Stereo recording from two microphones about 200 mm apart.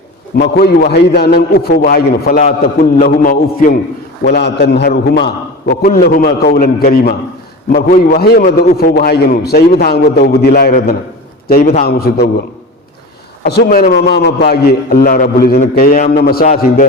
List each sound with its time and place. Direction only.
0.3 s a man's voice: 55° left (ahead or behind)
4.4 s a man's voice: 55° left (ahead or behind)
13.4 s a man's voice: 50° left (ahead or behind)
13.9 s a man's voice: 55° left (ahead or behind)